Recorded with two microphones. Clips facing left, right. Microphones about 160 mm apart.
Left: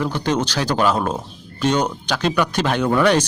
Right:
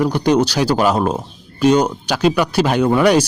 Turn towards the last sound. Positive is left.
turn(degrees=-10)  # may be behind; listen again after turning